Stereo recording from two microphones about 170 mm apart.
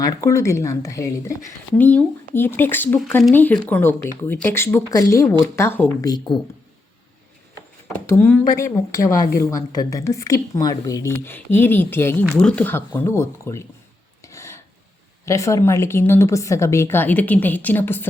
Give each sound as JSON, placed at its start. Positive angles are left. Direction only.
{"t": 0.0, "sound": "speech", "side_deg": 20}
{"t": 8.0, "sound": "speech", "side_deg": 10}
{"t": 9.2, "sound": "a woman's voice", "side_deg": 60}
{"t": 9.5, "sound": "speech", "side_deg": 20}
{"t": 14.3, "sound": "a sound", "side_deg": 15}
{"t": 15.2, "sound": "speech", "side_deg": 15}